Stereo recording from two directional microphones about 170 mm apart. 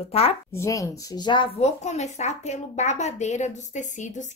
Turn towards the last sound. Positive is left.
turn(degrees=45)  # may be behind; listen again after turning